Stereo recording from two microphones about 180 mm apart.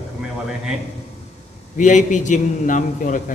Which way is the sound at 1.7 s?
45° left (ahead or behind).